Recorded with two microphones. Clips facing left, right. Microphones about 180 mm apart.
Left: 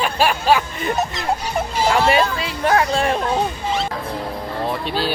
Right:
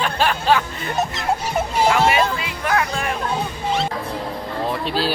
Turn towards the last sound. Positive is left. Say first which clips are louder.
# even
turn(degrees=0)  # may be behind; listen again after turning